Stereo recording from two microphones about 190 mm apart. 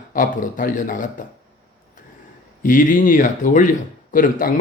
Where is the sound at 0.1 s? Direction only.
45° left (ahead or behind).